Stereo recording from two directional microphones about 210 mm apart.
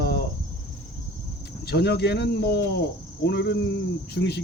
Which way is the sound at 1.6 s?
50° left (ahead or behind).